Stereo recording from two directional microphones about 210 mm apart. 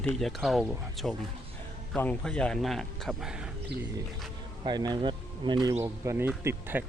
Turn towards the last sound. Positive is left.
turn(degrees=-10)  # may be behind; listen again after turning